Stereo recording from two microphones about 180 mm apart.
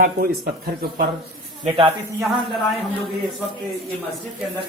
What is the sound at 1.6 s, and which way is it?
Speech, 30° right (ahead or behind).